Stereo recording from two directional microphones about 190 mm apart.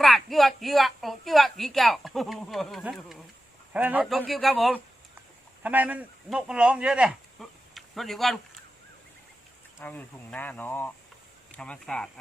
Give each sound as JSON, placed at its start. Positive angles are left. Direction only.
{"t": 0.0, "sound": "speech", "side_deg": 0}
{"t": 5.6, "sound": "speech", "side_deg": -10}
{"t": 9.8, "sound": "speech", "side_deg": 10}